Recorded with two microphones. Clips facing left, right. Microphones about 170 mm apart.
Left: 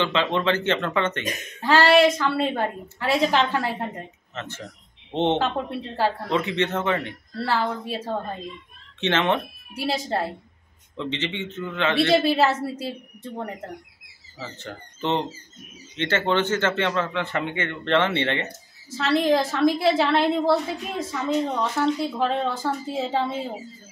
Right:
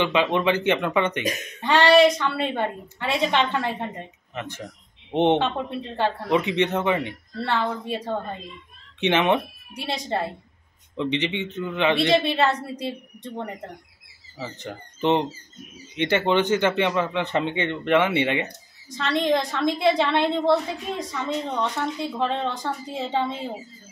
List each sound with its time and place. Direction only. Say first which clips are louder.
0.0 s a man's voice: right 2 dB; 15° right (ahead or behind)
1.6 s a woman's voice: right 1 dB; centre (ahead or behind)
4.3 s a man's voice: right 3 dB; 15° right (ahead or behind)
5.4 s a woman's voice: even; 5° left (ahead or behind)
6.2 s a man's voice: right 2 dB; 15° right (ahead or behind)
7.3 s a woman's voice: left 1 dB; 5° left (ahead or behind)
9.0 s a man's voice: right 2 dB; 15° right (ahead or behind)
9.8 s a woman's voice: left 2 dB; 5° left (ahead or behind)
11.0 s a man's voice: right 4 dB; 15° right (ahead or behind)
12.1 s a woman's voice: left 1 dB; 5° left (ahead or behind)
14.4 s a man's voice: right 2 dB; 15° right (ahead or behind)
18.9 s a woman's voice: left 2 dB; 5° left (ahead or behind)